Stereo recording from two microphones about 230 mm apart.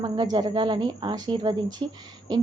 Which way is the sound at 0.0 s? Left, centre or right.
Centre.